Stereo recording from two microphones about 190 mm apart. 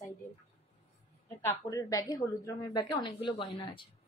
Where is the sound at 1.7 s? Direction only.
20° left (ahead or behind).